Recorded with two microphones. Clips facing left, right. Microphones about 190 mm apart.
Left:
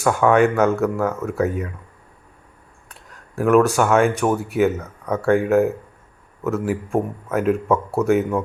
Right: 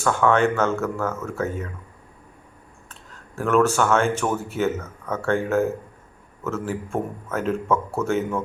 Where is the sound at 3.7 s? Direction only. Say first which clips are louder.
Left 4 dB; 15° left (ahead or behind).